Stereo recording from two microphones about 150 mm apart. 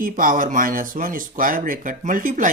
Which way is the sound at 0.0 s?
65° right (ahead or behind).